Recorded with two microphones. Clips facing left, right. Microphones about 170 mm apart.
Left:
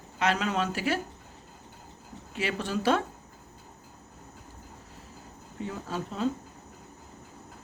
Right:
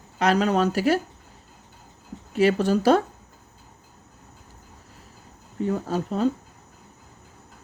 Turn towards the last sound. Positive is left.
turn(degrees=-45)  # may be behind; listen again after turning